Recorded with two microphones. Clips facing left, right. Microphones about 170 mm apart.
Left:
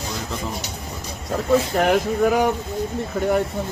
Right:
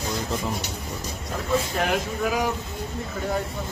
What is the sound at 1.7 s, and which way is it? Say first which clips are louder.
Speech: left 6 dB; 65° left (ahead or behind).